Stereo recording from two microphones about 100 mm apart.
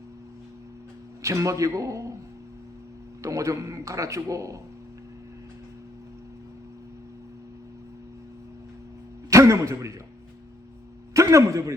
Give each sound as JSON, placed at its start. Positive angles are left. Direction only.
{"t": 1.2, "sound": "a man's voice", "side_deg": -30}
{"t": 3.2, "sound": "a man's voice", "side_deg": -30}
{"t": 9.3, "sound": "a sound", "side_deg": -30}
{"t": 11.1, "sound": "a man's voice", "side_deg": -30}